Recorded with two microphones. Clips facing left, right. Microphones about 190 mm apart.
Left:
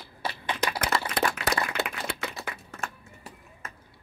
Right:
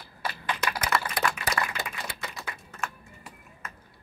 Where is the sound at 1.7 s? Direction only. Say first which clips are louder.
Left 5 dB; 65° left (ahead or behind).